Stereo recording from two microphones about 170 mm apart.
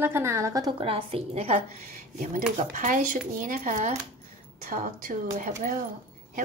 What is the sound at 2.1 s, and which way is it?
Speech, 50° right (ahead or behind).